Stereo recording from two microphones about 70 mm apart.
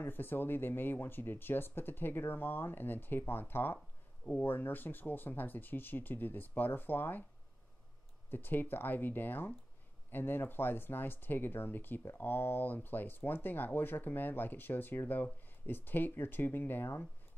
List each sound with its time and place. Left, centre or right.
0.0 s speech: left
8.3 s speech: left